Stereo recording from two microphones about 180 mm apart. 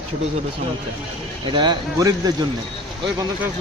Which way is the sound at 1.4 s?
25° right (ahead or behind).